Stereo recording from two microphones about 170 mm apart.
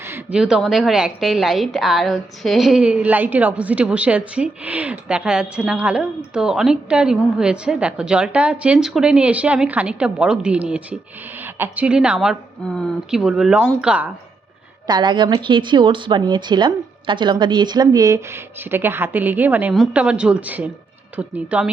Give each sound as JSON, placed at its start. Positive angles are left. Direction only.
{"t": 0.0, "sound": "a woman's voice", "side_deg": -10}
{"t": 14.8, "sound": "a woman's voice", "side_deg": -25}